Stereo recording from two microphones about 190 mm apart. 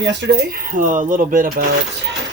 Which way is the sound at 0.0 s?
65° right (ahead or behind).